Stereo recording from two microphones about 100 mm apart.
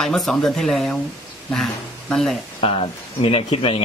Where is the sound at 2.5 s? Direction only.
70° left (ahead or behind).